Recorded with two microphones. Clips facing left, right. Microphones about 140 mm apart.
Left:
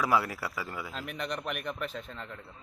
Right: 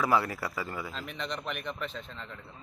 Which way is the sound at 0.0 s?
5° left (ahead or behind).